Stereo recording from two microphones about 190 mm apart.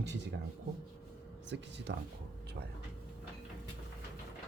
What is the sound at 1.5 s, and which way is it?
Speech, 70° right (ahead or behind).